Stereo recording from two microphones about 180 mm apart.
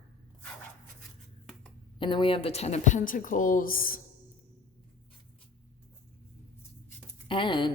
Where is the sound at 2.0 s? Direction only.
25° left (ahead or behind); by 4.0 s 50° left (ahead or behind).